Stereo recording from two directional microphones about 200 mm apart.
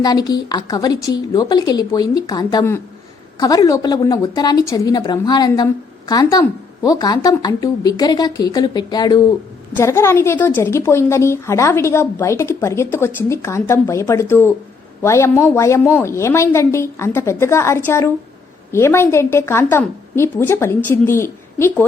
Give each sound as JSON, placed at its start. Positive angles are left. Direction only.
{"t": 0.0, "sound": "a woman's voice", "side_deg": 20}